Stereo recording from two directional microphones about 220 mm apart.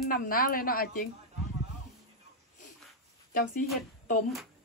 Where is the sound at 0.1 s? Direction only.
40° left (ahead or behind).